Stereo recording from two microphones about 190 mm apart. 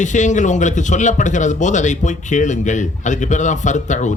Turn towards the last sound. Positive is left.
turn(degrees=40)  # may be behind; listen again after turning